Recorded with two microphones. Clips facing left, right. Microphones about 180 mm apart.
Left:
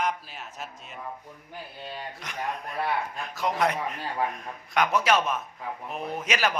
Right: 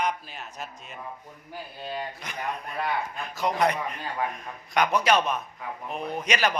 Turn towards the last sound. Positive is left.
turn(degrees=5)  # may be behind; listen again after turning